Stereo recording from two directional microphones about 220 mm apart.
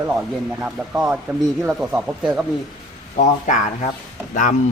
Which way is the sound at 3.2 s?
35° left (ahead or behind).